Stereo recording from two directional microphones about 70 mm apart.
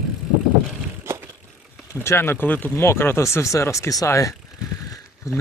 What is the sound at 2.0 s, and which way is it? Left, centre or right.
Speech, left.